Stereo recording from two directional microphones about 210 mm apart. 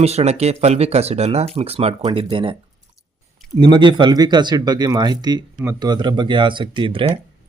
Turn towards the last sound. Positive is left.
turn(degrees=-25)  # may be behind; listen again after turning